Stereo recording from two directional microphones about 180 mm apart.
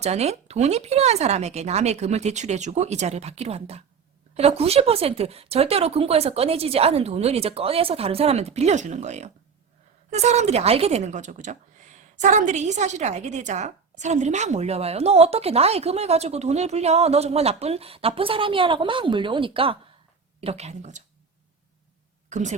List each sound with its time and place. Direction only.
0.0 s a woman's voice: 35° right (ahead or behind)
22.3 s a woman's voice: 40° right (ahead or behind)